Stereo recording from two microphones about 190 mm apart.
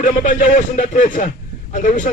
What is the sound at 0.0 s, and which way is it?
Speech, 45° left (ahead or behind).